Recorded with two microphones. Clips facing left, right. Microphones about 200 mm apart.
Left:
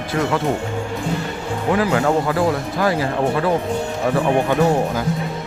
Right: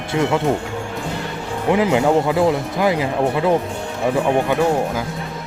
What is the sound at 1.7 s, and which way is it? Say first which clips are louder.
Speech: right 2 dB; 20° right (ahead or behind).